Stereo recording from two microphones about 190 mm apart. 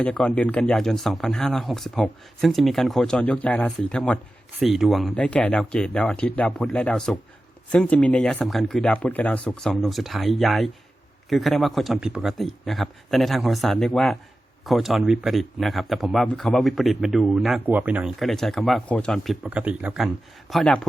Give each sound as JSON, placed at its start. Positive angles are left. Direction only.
{"t": 0.0, "sound": "speech", "side_deg": 5}